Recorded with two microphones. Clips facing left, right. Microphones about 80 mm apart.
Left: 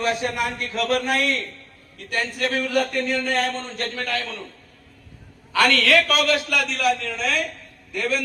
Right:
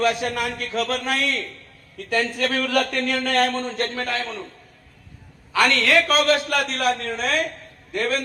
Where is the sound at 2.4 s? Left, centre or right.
Right.